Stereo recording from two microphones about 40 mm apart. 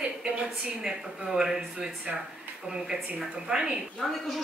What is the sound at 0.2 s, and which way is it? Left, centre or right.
A woman's voice, centre.